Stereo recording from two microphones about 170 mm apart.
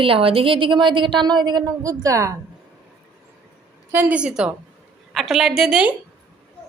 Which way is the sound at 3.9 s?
10° right (ahead or behind).